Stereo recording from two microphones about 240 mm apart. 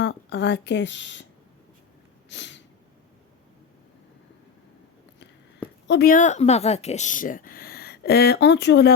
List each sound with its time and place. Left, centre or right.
0.0 s a woman's voice: left
2.3 s snort: left
5.9 s speech: left